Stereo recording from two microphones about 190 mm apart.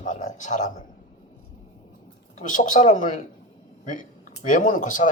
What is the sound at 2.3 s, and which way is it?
A man's voice, 40° left (ahead or behind).